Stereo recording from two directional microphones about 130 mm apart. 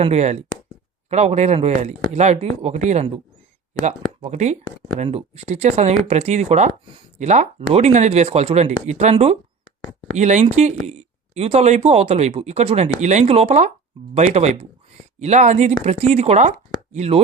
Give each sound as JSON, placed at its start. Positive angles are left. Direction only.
{"t": 0.0, "sound": "speech", "side_deg": -55}
{"t": 15.2, "sound": "speech", "side_deg": -65}